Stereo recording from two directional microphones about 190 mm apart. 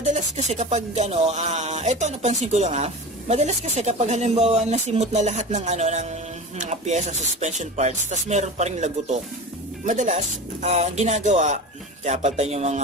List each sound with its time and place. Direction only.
0.0 s speech: 35° right (ahead or behind)